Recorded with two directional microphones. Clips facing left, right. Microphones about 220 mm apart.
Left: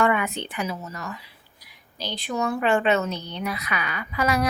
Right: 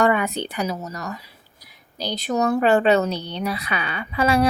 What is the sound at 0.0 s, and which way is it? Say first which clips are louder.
A woman's voice: right 3 dB; 35° right (ahead or behind).